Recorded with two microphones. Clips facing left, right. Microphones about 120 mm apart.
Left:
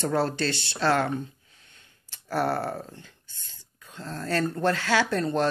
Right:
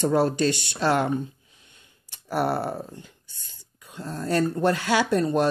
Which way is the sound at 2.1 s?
15° right (ahead or behind).